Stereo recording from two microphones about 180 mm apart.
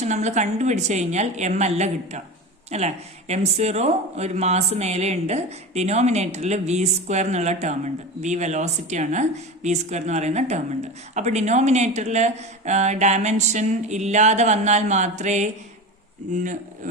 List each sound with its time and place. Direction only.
0.0 s a woman's voice: 40° right (ahead or behind)